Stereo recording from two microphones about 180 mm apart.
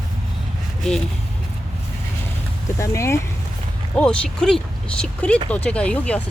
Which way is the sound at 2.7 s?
15° left (ahead or behind).